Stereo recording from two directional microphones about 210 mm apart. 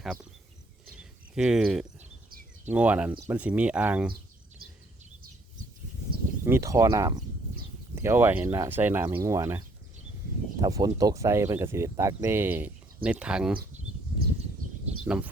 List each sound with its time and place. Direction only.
0.9 s cricket: 5° right (ahead or behind)
2.6 s speech: 5° right (ahead or behind)
6.4 s speech: 15° right (ahead or behind)
15.0 s speech: 5° right (ahead or behind)